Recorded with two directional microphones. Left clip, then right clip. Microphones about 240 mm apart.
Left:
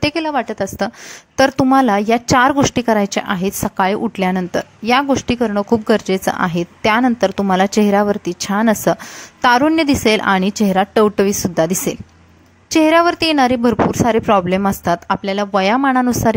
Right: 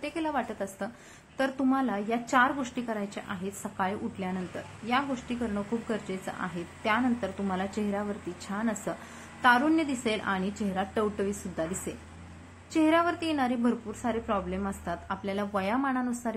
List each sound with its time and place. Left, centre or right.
0.0 s a woman's voice: left